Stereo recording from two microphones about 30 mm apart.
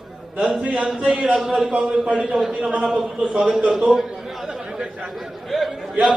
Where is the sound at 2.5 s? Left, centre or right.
Right.